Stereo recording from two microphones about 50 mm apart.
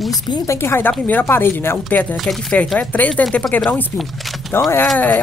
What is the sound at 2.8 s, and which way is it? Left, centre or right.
Speech, left.